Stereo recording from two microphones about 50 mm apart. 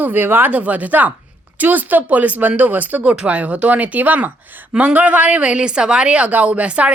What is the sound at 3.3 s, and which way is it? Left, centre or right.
A woman's voice, right.